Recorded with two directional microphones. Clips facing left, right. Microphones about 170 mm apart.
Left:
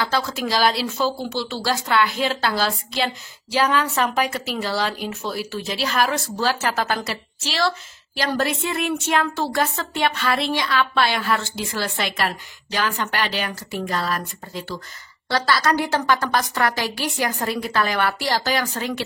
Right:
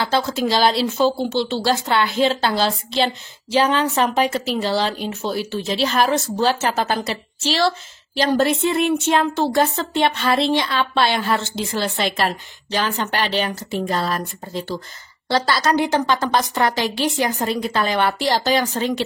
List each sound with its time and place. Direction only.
0.0 s speech: 25° right (ahead or behind)